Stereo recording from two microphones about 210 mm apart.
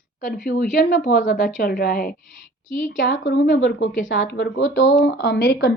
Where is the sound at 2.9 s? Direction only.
60° left (ahead or behind).